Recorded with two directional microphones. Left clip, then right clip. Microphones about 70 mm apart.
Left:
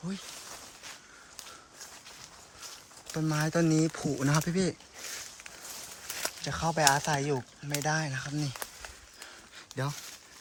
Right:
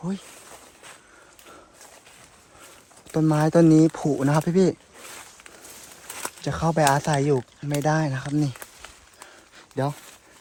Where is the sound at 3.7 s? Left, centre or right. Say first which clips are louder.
Right 10 dB; right.